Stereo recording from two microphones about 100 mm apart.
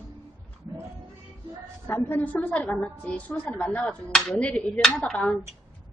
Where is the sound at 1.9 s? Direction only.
20° left (ahead or behind).